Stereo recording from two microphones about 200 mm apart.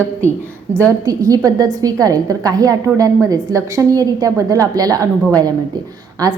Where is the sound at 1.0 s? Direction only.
15° right (ahead or behind).